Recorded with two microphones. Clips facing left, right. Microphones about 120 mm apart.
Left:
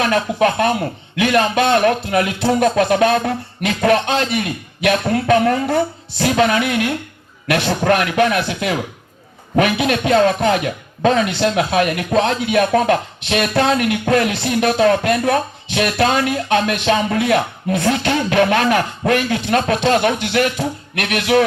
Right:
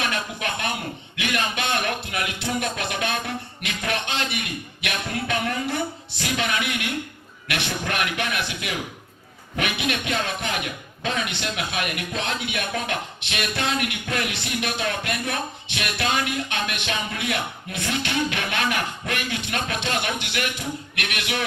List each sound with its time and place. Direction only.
0.0 s speech: 45° left (ahead or behind)